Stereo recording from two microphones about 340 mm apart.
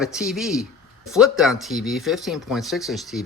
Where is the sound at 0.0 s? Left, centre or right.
Centre.